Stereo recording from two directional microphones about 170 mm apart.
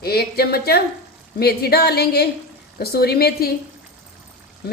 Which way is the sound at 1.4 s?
70° left (ahead or behind).